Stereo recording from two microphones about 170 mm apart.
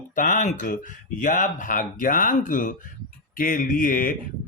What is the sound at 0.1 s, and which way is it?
Speech, 50° left (ahead or behind).